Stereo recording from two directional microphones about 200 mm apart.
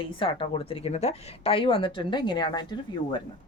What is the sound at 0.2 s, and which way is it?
Speech, 25° left (ahead or behind).